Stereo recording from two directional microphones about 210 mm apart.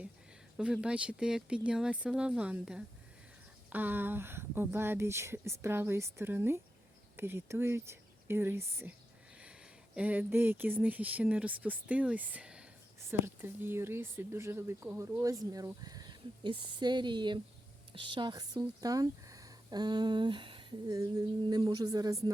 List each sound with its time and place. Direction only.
0.5 s speech: 5° right (ahead or behind)